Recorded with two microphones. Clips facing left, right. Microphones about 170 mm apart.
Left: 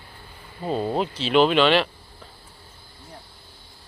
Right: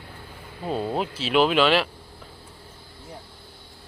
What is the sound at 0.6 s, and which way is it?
Speech, centre (ahead or behind).